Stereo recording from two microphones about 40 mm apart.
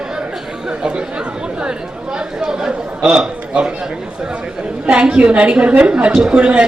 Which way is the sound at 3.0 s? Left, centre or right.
Centre.